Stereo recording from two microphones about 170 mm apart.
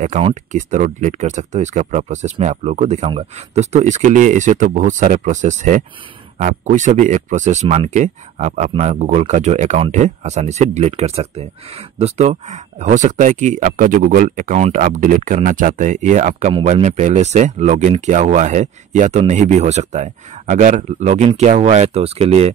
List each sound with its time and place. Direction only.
0.2 s speech: 45° right (ahead or behind)